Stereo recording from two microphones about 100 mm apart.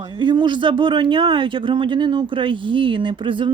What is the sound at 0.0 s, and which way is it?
Speech, 50° right (ahead or behind).